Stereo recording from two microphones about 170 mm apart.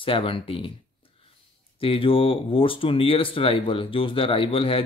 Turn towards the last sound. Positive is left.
turn(degrees=35)  # may be behind; listen again after turning